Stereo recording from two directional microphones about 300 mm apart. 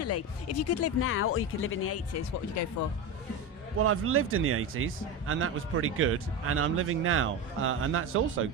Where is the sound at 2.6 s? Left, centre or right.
Left.